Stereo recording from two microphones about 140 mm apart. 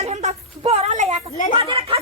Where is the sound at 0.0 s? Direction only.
55° right (ahead or behind).